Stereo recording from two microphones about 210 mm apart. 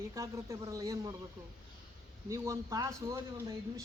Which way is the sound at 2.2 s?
15° right (ahead or behind).